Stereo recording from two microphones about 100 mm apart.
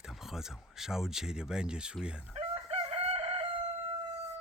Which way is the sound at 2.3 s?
75° right (ahead or behind).